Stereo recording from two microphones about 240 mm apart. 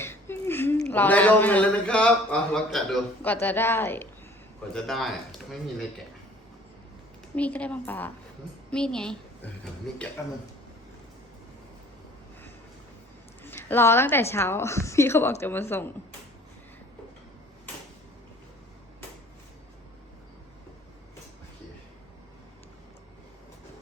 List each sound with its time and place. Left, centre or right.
0.0 s a woman's voice: centre
7.3 s a woman's voice: centre
13.4 s a woman's voice: centre